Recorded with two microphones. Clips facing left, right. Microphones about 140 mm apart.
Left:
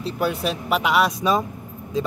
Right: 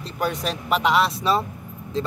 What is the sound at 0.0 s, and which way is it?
Speech, 5° left (ahead or behind).